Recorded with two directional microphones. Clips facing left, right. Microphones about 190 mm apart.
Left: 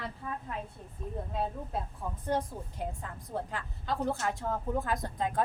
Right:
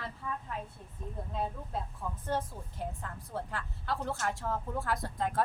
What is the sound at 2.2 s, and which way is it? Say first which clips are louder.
A woman's voice: left 3 dB; 15° left (ahead or behind).